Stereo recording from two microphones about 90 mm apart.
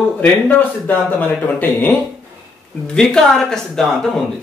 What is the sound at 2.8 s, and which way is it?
Speech, 10° left (ahead or behind).